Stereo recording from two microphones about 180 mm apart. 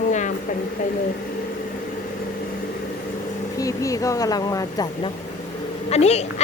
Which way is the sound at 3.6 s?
20° left (ahead or behind).